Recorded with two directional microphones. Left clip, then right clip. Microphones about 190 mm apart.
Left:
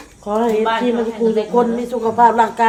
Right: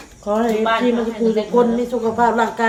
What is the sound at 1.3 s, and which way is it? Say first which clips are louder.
Speech: right 1 dB; 25° left (ahead or behind).